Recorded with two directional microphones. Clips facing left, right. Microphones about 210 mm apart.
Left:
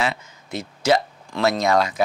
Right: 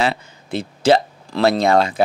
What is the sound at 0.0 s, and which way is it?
Speech, 30° right (ahead or behind).